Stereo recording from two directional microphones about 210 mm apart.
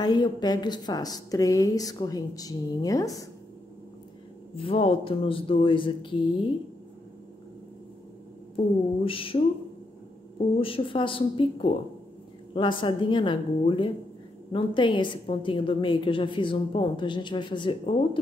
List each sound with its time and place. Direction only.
0.0 s a woman's voice: 20° left (ahead or behind)
4.6 s a woman's voice: 25° left (ahead or behind)
8.5 s a woman's voice: 25° left (ahead or behind)
10.6 s a woman's voice: 25° left (ahead or behind)